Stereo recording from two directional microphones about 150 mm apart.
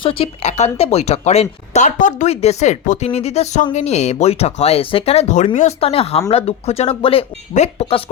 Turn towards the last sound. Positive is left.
turn(degrees=40)  # may be behind; listen again after turning